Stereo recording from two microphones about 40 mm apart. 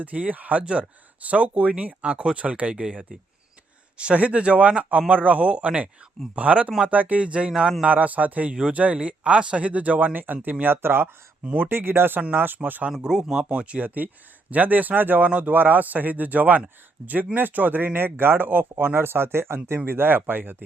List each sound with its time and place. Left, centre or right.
0.0 s a man's voice: right
3.9 s a man's voice: right
7.9 s a man's voice: right
10.4 s speech: right
10.8 s speech: right
13.0 s speech: centre
13.4 s a man's voice: right
14.5 s speech: right
15.3 s a man's voice: right
15.5 s speech: right
17.0 s speech: right
17.3 s speech: right
18.9 s speech: right